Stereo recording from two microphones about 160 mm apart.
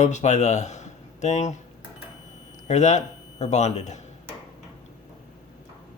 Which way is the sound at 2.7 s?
45° left (ahead or behind).